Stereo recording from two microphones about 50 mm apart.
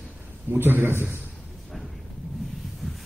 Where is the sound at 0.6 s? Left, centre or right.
Right.